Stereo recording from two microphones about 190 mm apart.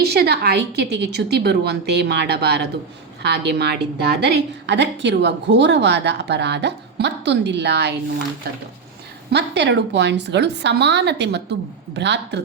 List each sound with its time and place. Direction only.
0.0 s a woman's voice: 60° right (ahead or behind)
9.3 s a woman's voice: 65° right (ahead or behind)